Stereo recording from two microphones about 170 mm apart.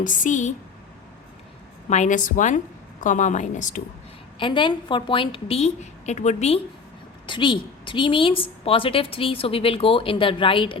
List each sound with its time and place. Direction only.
0.0 s a woman's voice: 50° left (ahead or behind)
1.9 s a woman's voice: 45° left (ahead or behind)
4.4 s a woman's voice: 30° left (ahead or behind)
7.3 s a woman's voice: 30° left (ahead or behind)